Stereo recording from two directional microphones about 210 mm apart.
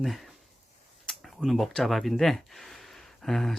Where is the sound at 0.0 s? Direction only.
Centre (ahead or behind).